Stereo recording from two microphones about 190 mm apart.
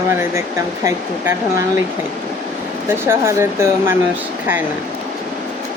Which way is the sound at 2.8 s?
10° right (ahead or behind).